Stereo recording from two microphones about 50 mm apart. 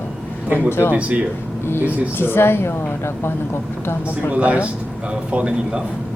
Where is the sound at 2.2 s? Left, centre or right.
Left.